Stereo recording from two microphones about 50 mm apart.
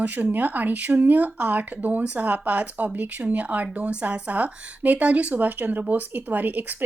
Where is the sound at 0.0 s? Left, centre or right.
Right.